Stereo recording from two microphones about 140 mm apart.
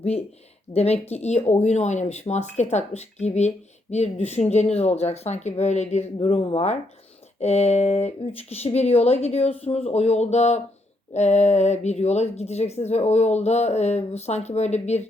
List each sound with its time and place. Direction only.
0.7 s speech: 50° left (ahead or behind)
6.1 s speech: 40° left (ahead or behind)